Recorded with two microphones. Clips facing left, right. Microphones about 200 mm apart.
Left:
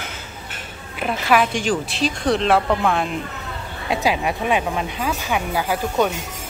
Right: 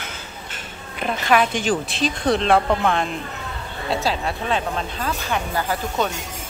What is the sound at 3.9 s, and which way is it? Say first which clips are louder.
A woman's voice: left 3 dB; 15° left (ahead or behind).